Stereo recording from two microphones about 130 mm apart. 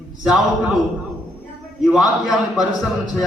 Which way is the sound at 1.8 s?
Centre (ahead or behind).